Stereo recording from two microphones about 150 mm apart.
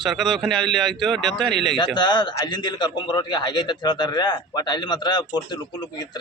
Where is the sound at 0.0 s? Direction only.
Centre (ahead or behind).